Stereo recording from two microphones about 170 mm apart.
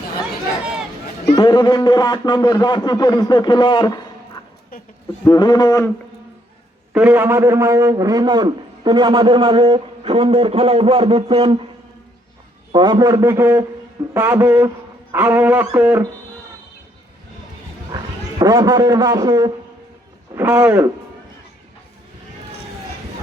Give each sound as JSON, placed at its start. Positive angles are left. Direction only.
{"t": 1.2, "sound": "a man's voice", "side_deg": 25}
{"t": 5.2, "sound": "a man's voice", "side_deg": 25}
{"t": 6.9, "sound": "a man's voice", "side_deg": -10}
{"t": 12.7, "sound": "a man's voice", "side_deg": -25}
{"t": 18.3, "sound": "a man's voice", "side_deg": -20}